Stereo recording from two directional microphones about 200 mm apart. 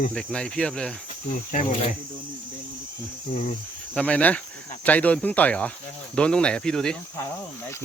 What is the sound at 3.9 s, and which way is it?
Speech, 5° left (ahead or behind).